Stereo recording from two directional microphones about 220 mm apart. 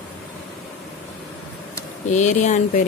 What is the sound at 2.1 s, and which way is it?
Speech, 35° left (ahead or behind).